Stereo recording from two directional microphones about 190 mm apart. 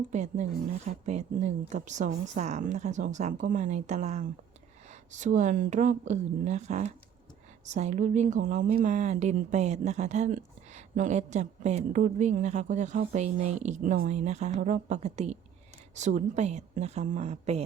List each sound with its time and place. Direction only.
0.1 s speech: 40° right (ahead or behind)